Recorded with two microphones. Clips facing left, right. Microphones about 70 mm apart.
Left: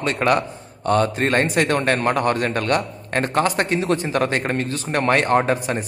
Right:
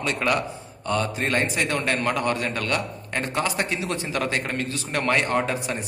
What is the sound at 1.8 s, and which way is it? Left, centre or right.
A man's voice, left.